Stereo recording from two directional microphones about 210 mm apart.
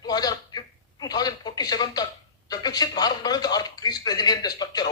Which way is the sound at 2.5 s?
20° left (ahead or behind).